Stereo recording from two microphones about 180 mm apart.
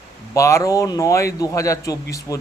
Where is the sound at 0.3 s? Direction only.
15° left (ahead or behind).